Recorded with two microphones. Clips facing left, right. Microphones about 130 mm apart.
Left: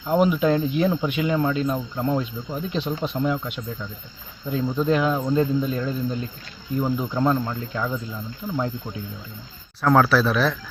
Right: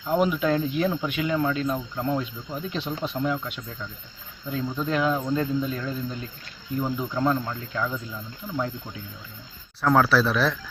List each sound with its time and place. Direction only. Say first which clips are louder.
0.1 s speech: left 3 dB; 20° left (ahead or behind)
9.8 s speech: left 2 dB; centre (ahead or behind)